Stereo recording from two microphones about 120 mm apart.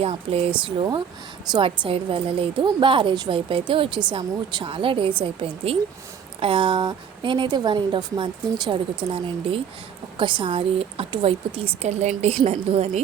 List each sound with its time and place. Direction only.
0.0 s speech: 55° right (ahead or behind)
1.5 s a woman's voice: 40° right (ahead or behind); by 13.0 s 65° right (ahead or behind)